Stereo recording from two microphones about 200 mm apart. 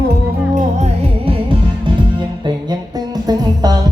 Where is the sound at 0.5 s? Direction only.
30° right (ahead or behind).